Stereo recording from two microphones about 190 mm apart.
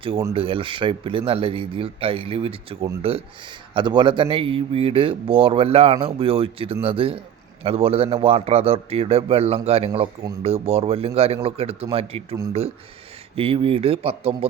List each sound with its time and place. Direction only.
0.3 s a man's voice: 30° right (ahead or behind)